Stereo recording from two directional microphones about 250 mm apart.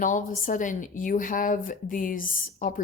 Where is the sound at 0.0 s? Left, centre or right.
Left.